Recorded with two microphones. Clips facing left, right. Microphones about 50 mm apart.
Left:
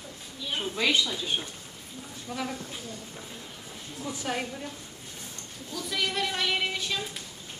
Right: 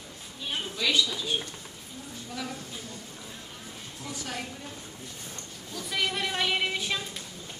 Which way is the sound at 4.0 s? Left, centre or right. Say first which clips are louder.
Left 5 dB; left.